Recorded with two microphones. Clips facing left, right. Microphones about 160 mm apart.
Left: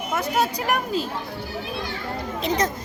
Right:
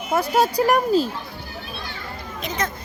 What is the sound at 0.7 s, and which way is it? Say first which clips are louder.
Speech: right 6 dB; 35° right (ahead or behind).